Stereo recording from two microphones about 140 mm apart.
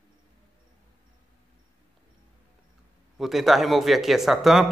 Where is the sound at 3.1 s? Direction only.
Centre (ahead or behind).